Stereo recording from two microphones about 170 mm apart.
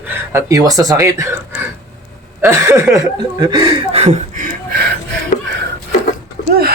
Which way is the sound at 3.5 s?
25° right (ahead or behind).